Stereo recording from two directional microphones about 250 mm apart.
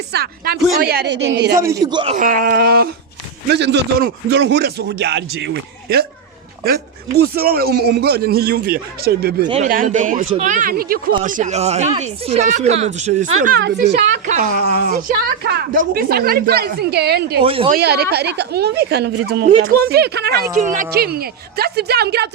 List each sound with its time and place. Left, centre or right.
0.1 s a woman's voice: right
1.5 s a man's voice: centre
2.1 s a woman's voice: right
7.3 s a woman's voice: right
9.4 s speech: right
9.6 s a woman's voice: right
13.6 s speech: right
14.3 s a woman's voice: right
17.4 s speech: right
17.7 s a woman's voice: right